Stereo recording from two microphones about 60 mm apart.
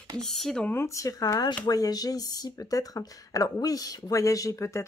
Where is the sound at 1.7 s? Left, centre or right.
Left.